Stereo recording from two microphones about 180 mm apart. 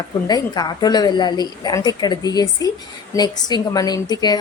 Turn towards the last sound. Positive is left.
turn(degrees=20)  # may be behind; listen again after turning